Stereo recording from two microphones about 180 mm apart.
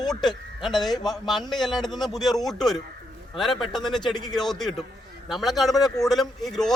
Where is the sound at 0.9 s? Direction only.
25° left (ahead or behind).